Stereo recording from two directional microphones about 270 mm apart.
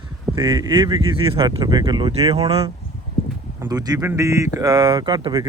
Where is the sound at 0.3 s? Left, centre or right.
Centre.